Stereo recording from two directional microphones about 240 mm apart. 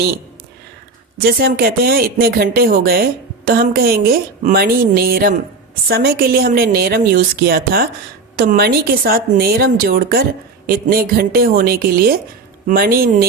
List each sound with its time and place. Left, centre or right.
1.2 s speech: right